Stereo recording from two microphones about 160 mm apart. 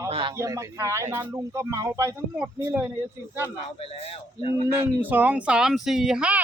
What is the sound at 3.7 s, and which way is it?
Speech, 40° left (ahead or behind).